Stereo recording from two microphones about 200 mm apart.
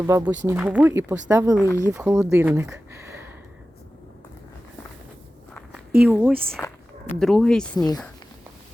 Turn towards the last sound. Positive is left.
turn(degrees=20)  # may be behind; listen again after turning